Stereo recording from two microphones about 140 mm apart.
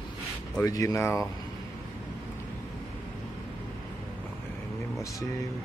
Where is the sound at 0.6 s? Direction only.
25° left (ahead or behind).